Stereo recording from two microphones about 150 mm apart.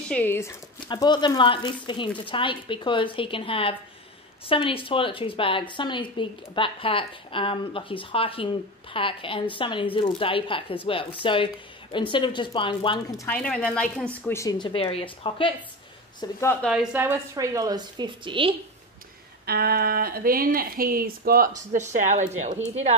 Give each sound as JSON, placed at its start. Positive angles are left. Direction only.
{"t": 0.1, "sound": "a woman's voice", "side_deg": 15}
{"t": 0.7, "sound": "a woman's voice", "side_deg": 30}
{"t": 13.3, "sound": "a woman's voice", "side_deg": 10}
{"t": 14.3, "sound": "a woman's voice", "side_deg": 25}
{"t": 16.6, "sound": "a woman's voice", "side_deg": -10}
{"t": 19.4, "sound": "speech", "side_deg": -90}
{"t": 21.7, "sound": "speech", "side_deg": -55}